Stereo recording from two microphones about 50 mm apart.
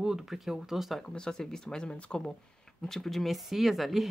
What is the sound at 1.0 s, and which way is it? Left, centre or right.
Speech, centre.